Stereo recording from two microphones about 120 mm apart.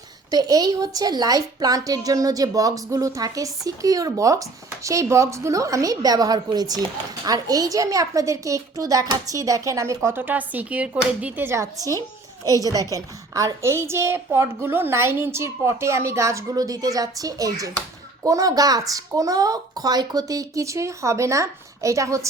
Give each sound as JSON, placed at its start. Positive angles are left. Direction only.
{"t": 0.3, "sound": "a woman's voice", "side_deg": -30}